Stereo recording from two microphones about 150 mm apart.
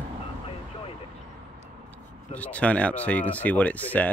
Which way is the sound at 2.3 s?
10° left (ahead or behind).